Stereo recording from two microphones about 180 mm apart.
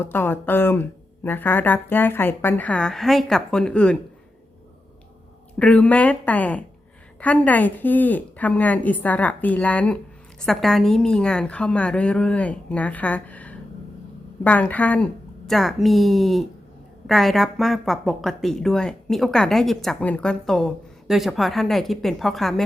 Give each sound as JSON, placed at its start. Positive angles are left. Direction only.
{"t": 0.0, "sound": "speech", "side_deg": 10}
{"t": 5.5, "sound": "speech", "side_deg": 5}